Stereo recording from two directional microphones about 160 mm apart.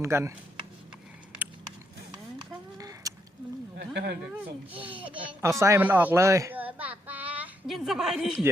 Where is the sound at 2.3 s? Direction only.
25° right (ahead or behind).